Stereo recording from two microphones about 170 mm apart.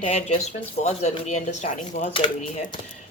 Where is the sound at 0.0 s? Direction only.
40° left (ahead or behind).